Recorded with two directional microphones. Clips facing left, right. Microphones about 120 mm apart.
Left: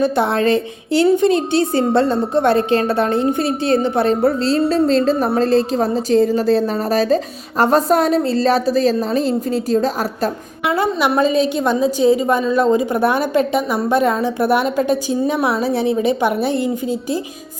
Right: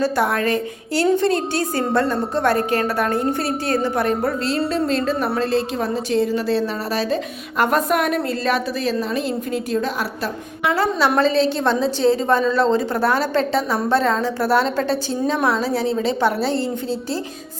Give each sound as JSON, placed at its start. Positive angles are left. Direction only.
{"t": 0.0, "sound": "a woman's voice", "side_deg": 25}
{"t": 10.7, "sound": "a woman's voice", "side_deg": 15}